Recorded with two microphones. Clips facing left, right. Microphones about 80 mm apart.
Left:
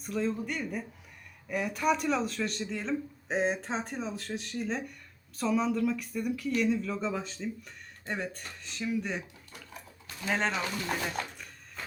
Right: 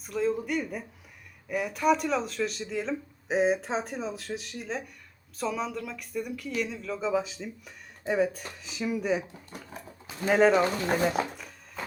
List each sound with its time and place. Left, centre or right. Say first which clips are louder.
0.0 s speech: right 3 dB; centre
10.5 s speech: right 9 dB; right
11.3 s a sound: right 4 dB; centre